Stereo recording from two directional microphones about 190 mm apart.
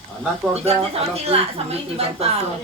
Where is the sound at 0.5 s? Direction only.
35° right (ahead or behind).